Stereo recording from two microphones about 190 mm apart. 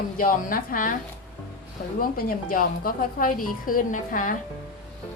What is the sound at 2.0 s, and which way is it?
Speech, 50° left (ahead or behind).